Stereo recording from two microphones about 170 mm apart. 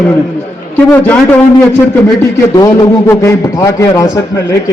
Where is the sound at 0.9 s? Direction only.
10° left (ahead or behind).